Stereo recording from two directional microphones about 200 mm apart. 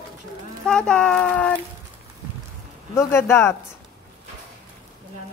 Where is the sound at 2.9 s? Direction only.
15° left (ahead or behind).